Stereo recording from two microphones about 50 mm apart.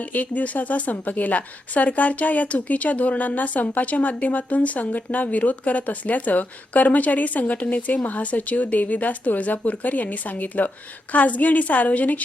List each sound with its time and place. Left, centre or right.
0.1 s speech: left